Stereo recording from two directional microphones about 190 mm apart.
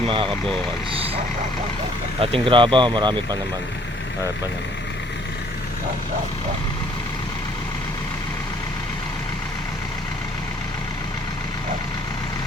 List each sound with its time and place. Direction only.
0.1 s speech: 25° right (ahead or behind)
2.2 s speech: 30° right (ahead or behind)